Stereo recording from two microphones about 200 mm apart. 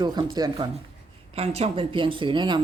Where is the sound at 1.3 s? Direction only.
30° right (ahead or behind).